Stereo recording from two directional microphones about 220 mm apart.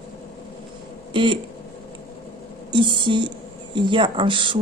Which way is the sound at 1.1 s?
20° right (ahead or behind).